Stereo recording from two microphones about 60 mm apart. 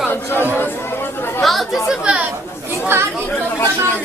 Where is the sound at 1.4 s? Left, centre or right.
Centre.